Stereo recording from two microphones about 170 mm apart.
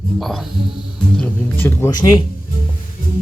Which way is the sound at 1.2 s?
15° left (ahead or behind).